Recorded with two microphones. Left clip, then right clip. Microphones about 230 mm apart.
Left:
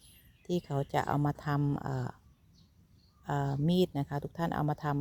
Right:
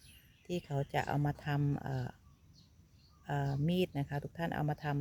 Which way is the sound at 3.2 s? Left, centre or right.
Centre.